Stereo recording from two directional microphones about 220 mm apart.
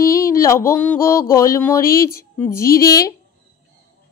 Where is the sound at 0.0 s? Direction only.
10° left (ahead or behind).